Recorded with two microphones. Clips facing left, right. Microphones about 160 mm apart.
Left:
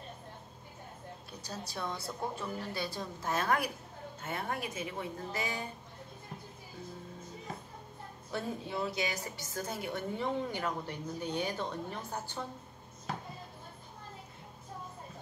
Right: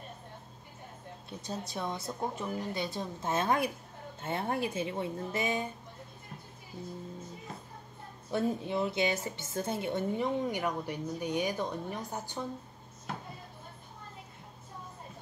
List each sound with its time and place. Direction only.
1.4 s a woman's voice: 20° right (ahead or behind)
8.3 s a woman's voice: 20° right (ahead or behind)